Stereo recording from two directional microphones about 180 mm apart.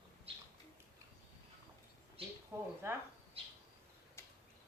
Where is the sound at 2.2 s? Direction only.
30° right (ahead or behind).